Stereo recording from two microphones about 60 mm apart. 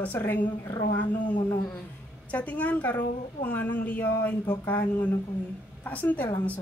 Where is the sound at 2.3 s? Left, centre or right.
Left.